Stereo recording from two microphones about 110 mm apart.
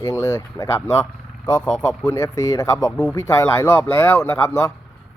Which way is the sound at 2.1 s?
25° left (ahead or behind).